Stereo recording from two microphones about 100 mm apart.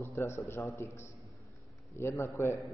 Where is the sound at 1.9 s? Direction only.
30° left (ahead or behind).